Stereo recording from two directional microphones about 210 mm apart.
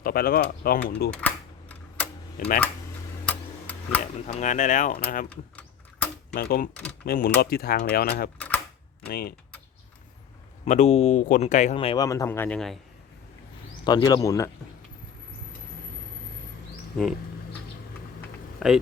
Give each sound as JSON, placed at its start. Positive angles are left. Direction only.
{"t": 0.0, "sound": "speech", "side_deg": 45}
{"t": 1.2, "sound": "typing", "side_deg": 5}
{"t": 3.2, "sound": "tick-tock", "side_deg": 5}
{"t": 4.3, "sound": "speech", "side_deg": 35}
{"t": 5.3, "sound": "typing", "side_deg": 5}
{"t": 6.3, "sound": "speech", "side_deg": 45}
{"t": 8.4, "sound": "typewriter", "side_deg": 5}
{"t": 9.0, "sound": "speech", "side_deg": 45}
{"t": 10.7, "sound": "speech", "side_deg": 35}
{"t": 12.0, "sound": "speech", "side_deg": 15}
{"t": 13.8, "sound": "speech", "side_deg": 20}
{"t": 18.6, "sound": "speech", "side_deg": 0}